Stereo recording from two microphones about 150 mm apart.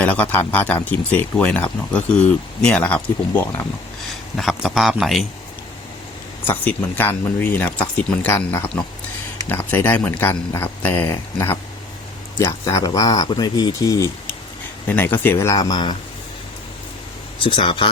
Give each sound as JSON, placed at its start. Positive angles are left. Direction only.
{"t": 0.0, "sound": "speech", "side_deg": 10}
{"t": 4.4, "sound": "speech", "side_deg": 0}
{"t": 6.4, "sound": "speech", "side_deg": 15}
{"t": 17.4, "sound": "speech", "side_deg": 35}